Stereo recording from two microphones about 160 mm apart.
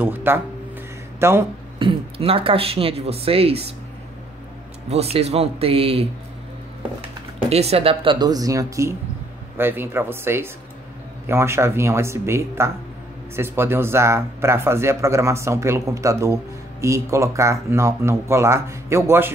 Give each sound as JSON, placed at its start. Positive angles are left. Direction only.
{"t": 0.0, "sound": "speech", "side_deg": -15}
{"t": 1.8, "sound": "speech", "side_deg": -35}
{"t": 4.8, "sound": "speech", "side_deg": -40}
{"t": 7.4, "sound": "speech", "side_deg": -40}